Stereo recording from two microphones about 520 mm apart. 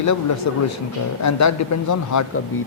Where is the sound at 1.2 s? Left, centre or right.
Left.